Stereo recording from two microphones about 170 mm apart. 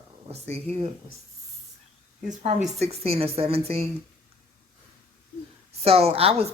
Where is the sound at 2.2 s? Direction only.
40° right (ahead or behind).